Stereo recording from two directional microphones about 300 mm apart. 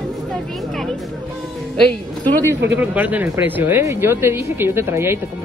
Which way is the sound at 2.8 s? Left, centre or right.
Centre.